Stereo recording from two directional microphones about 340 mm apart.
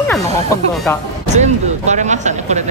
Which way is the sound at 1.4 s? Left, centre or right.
Right.